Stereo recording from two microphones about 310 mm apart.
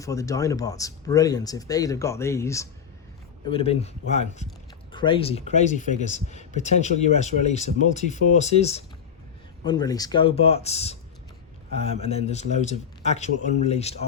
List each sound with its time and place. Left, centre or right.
0.0 s speech: centre